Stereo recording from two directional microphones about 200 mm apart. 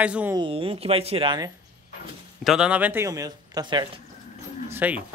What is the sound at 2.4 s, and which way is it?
Speech, 5° right (ahead or behind).